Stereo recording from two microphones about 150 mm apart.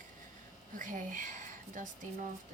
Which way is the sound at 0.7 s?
60° right (ahead or behind).